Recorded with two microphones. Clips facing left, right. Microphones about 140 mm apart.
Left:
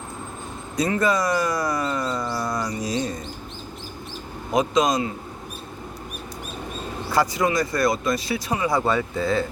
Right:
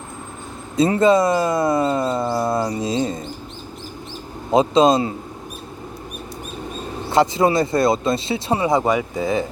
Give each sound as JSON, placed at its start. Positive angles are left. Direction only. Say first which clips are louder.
{"t": 0.8, "sound": "speech", "louder": "right 7 dB", "side_deg": -25}
{"t": 4.5, "sound": "speech", "louder": "right 6 dB", "side_deg": -30}
{"t": 7.1, "sound": "speech", "louder": "right 5 dB", "side_deg": -25}